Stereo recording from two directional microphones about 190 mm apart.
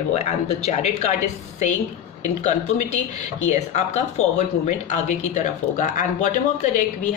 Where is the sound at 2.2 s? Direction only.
35° left (ahead or behind).